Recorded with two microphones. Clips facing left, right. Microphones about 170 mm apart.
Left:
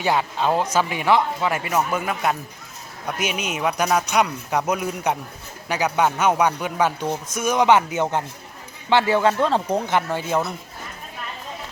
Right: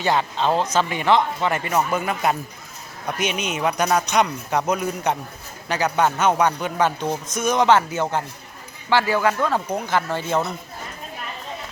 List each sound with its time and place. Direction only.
0.0 s a man's voice: 10° left (ahead or behind)